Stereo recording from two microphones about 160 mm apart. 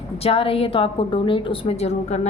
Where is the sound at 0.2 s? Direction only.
35° left (ahead or behind).